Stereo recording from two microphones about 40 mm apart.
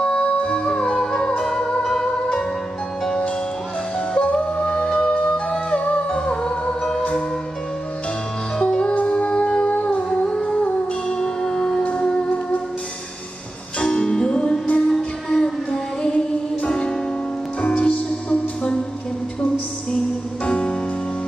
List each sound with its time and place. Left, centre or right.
0.2 s music: left; by 2.0 s centre
2.0 s music: left
4.1 s music: left
8.5 s music: left
8.9 s music: left; by 11.8 s centre
11.8 s music: left
13.7 s music: left
14.9 s music: centre; by 17.9 s left
17.9 s music: left
20.4 s music: left